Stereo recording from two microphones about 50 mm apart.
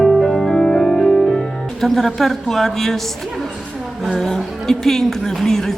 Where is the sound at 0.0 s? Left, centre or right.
Centre.